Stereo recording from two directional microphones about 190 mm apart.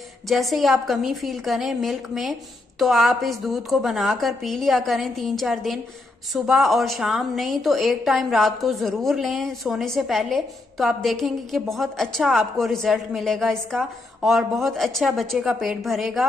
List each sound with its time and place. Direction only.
0.3 s a woman's voice: centre (ahead or behind)